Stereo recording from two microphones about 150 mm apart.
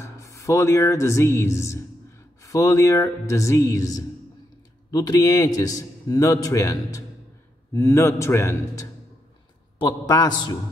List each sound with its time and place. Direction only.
0.0 s speech: 20° left (ahead or behind)